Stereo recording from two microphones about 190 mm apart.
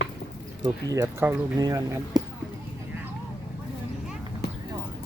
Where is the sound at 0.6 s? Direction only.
20° right (ahead or behind).